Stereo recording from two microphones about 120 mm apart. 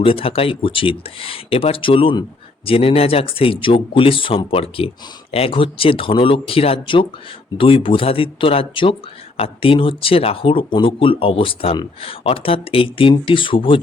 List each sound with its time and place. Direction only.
0.0 s speech: 50° left (ahead or behind)